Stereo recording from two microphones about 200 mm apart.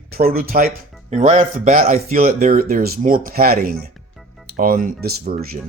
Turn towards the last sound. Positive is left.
turn(degrees=-45)  # may be behind; listen again after turning